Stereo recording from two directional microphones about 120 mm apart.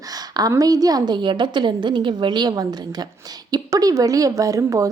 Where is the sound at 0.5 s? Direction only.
30° right (ahead or behind).